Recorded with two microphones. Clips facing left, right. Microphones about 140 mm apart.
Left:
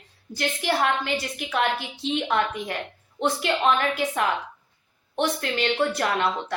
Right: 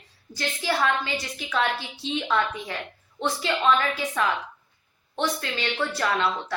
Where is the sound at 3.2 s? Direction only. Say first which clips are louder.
Left 3 dB; 15° left (ahead or behind).